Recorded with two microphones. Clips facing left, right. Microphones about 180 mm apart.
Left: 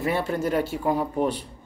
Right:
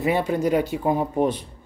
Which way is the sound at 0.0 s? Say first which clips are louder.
Right 3 dB; 15° right (ahead or behind).